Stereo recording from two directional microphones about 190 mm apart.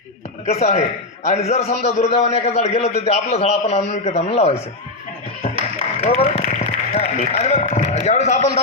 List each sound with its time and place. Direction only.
0.4 s a man's voice: 35° left (ahead or behind)
6.0 s speech: 35° left (ahead or behind)